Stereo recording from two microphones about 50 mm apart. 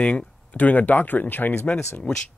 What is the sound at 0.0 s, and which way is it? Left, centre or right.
Speech, left.